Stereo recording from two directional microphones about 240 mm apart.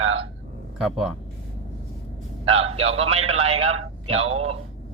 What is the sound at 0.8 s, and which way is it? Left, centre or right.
Speech, centre.